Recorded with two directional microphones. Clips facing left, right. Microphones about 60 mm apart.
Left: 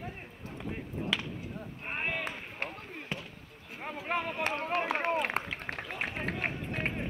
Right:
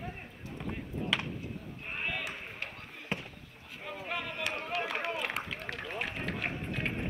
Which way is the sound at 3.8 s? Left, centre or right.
Left.